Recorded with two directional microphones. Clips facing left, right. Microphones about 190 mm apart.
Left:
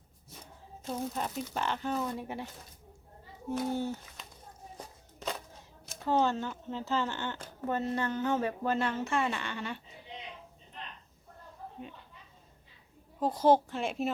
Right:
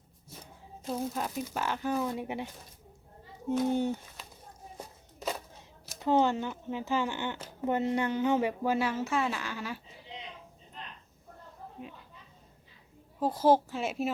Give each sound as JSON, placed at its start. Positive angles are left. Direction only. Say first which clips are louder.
{"t": 0.9, "sound": "speech", "louder": "right 2 dB", "side_deg": -5}
{"t": 3.7, "sound": "speech", "louder": "right 4 dB", "side_deg": -20}
{"t": 6.0, "sound": "speech", "louder": "right 2 dB", "side_deg": -15}
{"t": 13.1, "sound": "a woman's voice", "louder": "even", "side_deg": -5}